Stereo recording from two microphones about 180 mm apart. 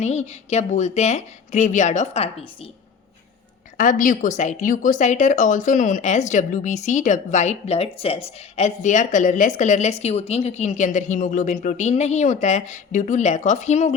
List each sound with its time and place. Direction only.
0.0 s a woman's voice: 40° left (ahead or behind)
3.8 s a woman's voice: 50° left (ahead or behind)